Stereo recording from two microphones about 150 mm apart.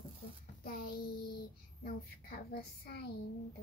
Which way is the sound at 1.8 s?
90° left.